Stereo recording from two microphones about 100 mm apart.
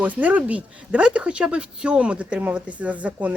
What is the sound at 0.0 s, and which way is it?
Speech, 15° right (ahead or behind).